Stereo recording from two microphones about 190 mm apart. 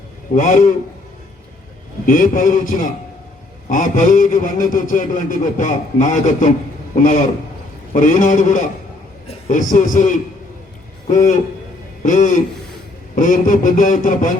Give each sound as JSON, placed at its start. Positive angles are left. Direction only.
{"t": 0.3, "sound": "a man's voice", "side_deg": 45}
{"t": 2.0, "sound": "a man's voice", "side_deg": 45}
{"t": 12.0, "sound": "a man's voice", "side_deg": 40}